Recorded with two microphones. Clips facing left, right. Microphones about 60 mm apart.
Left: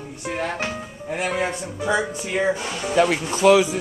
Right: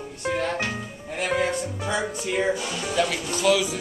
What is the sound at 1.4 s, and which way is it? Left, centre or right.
Speech, centre.